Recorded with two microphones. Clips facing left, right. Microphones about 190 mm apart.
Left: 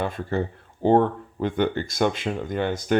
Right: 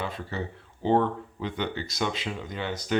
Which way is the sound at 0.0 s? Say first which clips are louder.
Left 7 dB; 50° left (ahead or behind).